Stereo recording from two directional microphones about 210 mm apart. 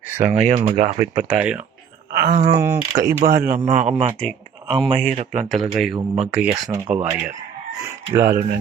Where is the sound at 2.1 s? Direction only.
40° right (ahead or behind).